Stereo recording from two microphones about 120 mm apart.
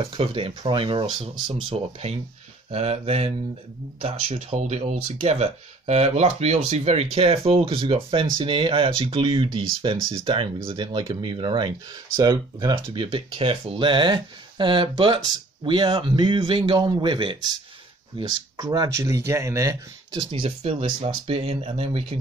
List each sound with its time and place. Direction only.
0.0 s speech: 50° right (ahead or behind)
1.5 s speech: 60° right (ahead or behind); by 18.9 s 35° right (ahead or behind)
18.9 s speech: 25° right (ahead or behind)
20.1 s speech: 45° right (ahead or behind)